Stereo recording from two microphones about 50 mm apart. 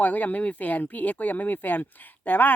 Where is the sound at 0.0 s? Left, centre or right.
Left.